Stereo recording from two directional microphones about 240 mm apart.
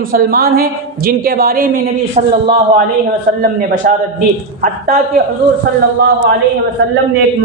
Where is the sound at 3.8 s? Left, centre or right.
Right.